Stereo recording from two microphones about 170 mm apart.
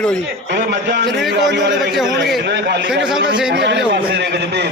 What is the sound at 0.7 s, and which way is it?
A man's voice, 80° right.